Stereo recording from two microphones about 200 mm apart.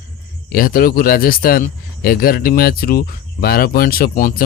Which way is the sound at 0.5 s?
45° left (ahead or behind).